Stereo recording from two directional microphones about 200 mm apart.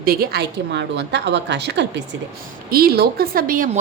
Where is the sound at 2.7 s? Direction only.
50° right (ahead or behind).